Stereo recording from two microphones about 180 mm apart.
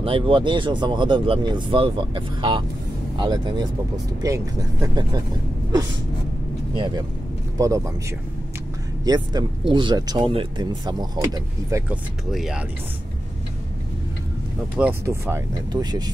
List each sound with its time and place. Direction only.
0.0 s speech: 30° right (ahead or behind)
6.8 s speech: 20° right (ahead or behind)
9.0 s speech: 20° right (ahead or behind)
11.9 s speech: centre (ahead or behind)
14.8 s speech: 10° right (ahead or behind)